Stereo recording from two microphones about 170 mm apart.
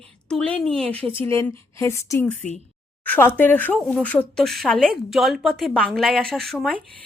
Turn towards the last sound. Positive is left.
turn(degrees=0)  # may be behind; listen again after turning